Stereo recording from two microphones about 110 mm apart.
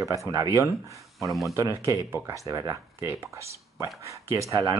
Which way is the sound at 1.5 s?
25° right (ahead or behind).